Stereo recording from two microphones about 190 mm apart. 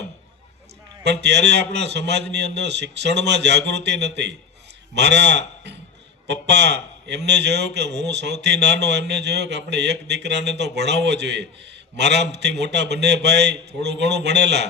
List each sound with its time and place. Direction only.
1.0 s a man's voice: 65° right (ahead or behind)